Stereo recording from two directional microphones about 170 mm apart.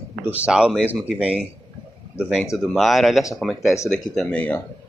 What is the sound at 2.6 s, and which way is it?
Speech, centre (ahead or behind).